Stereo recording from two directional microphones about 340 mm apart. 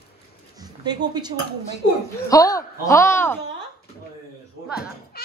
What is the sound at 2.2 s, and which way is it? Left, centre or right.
Speech, centre.